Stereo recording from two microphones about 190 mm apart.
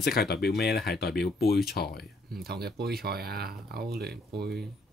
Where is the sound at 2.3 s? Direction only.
55° right (ahead or behind).